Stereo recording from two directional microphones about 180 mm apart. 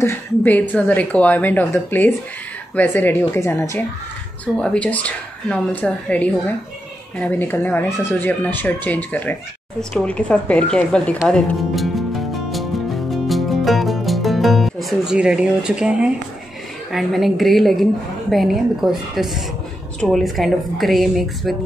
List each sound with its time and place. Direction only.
0.0 s a woman's voice: 10° left (ahead or behind)